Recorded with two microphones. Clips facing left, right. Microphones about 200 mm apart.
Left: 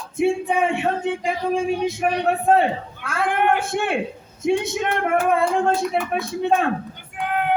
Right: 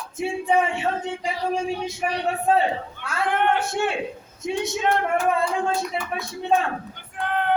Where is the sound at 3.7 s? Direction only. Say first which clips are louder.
Left 2 dB; 55° left (ahead or behind).